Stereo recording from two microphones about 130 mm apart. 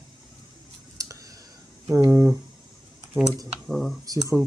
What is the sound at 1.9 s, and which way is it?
Speech, 20° right (ahead or behind).